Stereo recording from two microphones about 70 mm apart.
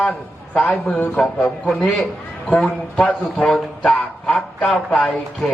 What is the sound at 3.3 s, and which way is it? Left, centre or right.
A man's voice, centre.